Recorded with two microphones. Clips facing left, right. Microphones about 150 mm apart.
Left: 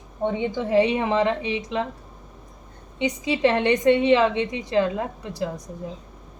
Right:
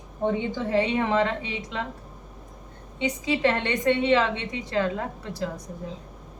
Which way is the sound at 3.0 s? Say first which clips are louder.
Left 3 dB; 20° left (ahead or behind).